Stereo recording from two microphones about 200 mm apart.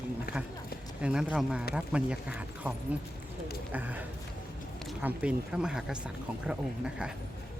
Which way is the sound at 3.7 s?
10° right (ahead or behind).